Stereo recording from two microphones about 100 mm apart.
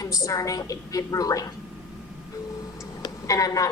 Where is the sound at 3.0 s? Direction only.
35° left (ahead or behind).